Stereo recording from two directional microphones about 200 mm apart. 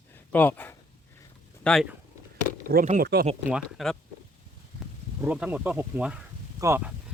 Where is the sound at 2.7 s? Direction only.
45° right (ahead or behind).